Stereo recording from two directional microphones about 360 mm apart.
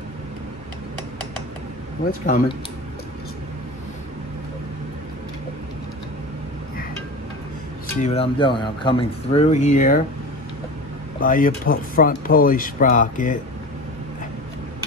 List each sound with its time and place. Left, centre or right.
2.2 s speech: left
8.0 s speech: centre
11.1 s speech: left